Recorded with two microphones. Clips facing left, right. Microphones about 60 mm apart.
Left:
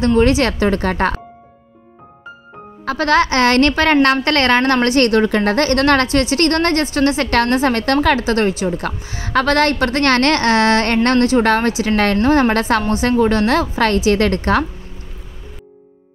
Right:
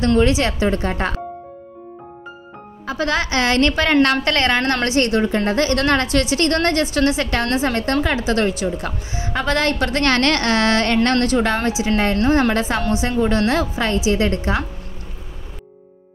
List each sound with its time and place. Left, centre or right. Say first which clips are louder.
0.2 s a woman's voice: left 3 dB; left
2.8 s a woman's voice: left 6 dB; left
8.3 s a woman's voice: left 2 dB; left
9.2 s a woman's voice: left 5 dB; left
11.4 s a woman's voice: left 4 dB; left